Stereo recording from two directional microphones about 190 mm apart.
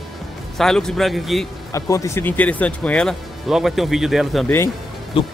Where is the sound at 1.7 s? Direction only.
15° left (ahead or behind); by 4.5 s centre (ahead or behind).